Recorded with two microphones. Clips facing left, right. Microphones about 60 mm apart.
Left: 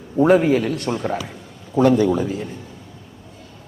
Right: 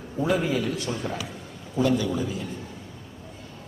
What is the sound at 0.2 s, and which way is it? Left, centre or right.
A man's voice, left.